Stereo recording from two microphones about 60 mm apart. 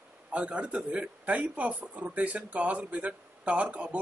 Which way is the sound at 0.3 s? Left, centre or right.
Centre.